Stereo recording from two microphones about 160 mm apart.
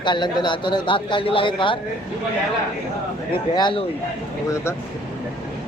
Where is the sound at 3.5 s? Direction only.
30° left (ahead or behind).